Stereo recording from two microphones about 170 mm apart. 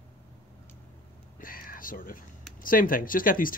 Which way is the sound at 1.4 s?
55° left (ahead or behind).